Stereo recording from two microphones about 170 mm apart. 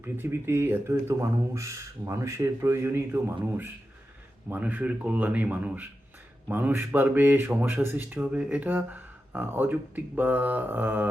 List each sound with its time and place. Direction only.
0.0 s speech: 15° right (ahead or behind)
4.4 s speech: 10° right (ahead or behind)